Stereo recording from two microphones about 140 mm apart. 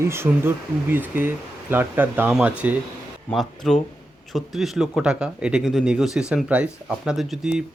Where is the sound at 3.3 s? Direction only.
Centre (ahead or behind).